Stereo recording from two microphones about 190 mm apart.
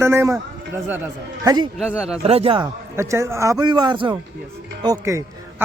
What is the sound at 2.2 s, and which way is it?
Speech, 30° right (ahead or behind).